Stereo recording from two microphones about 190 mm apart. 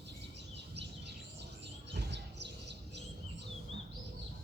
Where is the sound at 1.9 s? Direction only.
65° right (ahead or behind).